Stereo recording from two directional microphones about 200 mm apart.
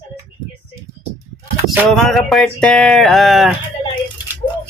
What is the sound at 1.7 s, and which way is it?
Speech, centre (ahead or behind).